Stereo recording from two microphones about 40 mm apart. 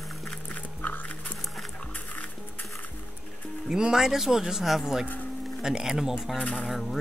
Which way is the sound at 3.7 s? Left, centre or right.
Centre.